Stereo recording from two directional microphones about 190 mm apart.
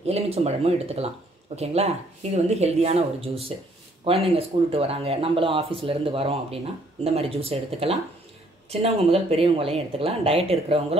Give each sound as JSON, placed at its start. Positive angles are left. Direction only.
{"t": 0.0, "sound": "speech", "side_deg": -35}